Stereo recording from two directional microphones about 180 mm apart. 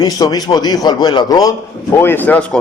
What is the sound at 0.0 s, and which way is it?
A man's voice, 20° left (ahead or behind).